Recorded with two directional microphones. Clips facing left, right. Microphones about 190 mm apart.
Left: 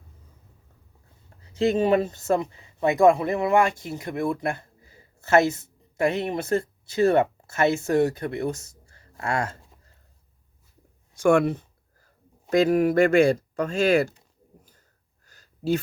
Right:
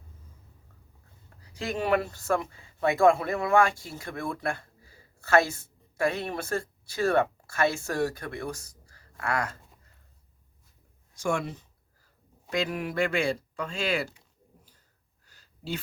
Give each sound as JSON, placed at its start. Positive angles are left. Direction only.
{"t": 1.4, "sound": "speech", "side_deg": 25}
{"t": 11.2, "sound": "speech", "side_deg": 60}
{"t": 14.6, "sound": "a sound", "side_deg": 45}